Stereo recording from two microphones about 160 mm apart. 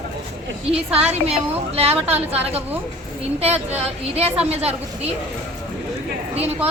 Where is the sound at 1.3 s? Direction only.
40° right (ahead or behind).